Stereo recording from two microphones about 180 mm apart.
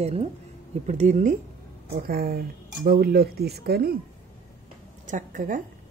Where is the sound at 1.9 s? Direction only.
55° right (ahead or behind).